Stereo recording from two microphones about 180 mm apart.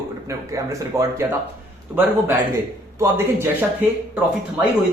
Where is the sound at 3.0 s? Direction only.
15° right (ahead or behind).